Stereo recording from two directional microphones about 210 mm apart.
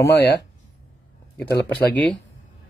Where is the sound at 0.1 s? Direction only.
50° left (ahead or behind).